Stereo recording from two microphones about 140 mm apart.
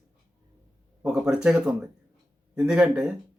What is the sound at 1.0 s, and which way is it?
Speech, 5° right (ahead or behind).